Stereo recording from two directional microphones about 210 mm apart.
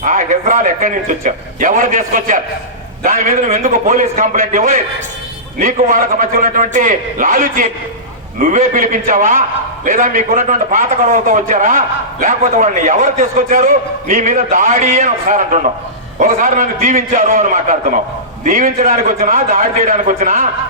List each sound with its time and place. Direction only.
0.0 s a man's voice: 40° right (ahead or behind)